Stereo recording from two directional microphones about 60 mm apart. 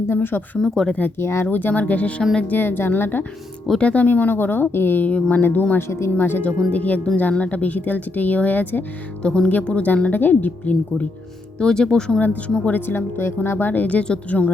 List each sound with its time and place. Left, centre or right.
0.1 s speech: left
0.6 s speech: centre
1.2 s speech: left
1.5 s speech: left
2.5 s speech: left
3.8 s speech: left
6.7 s speech: left
9.2 s speech: centre
11.6 s speech: centre
12.7 s speech: left